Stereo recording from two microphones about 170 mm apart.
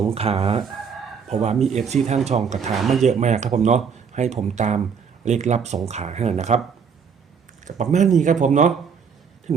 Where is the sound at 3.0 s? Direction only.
40° right (ahead or behind).